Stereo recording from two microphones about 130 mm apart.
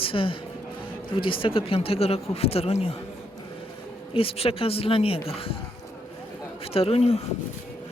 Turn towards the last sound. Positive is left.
turn(degrees=55)  # may be behind; listen again after turning